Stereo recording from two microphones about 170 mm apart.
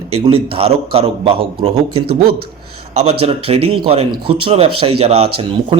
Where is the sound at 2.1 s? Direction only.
65° right (ahead or behind).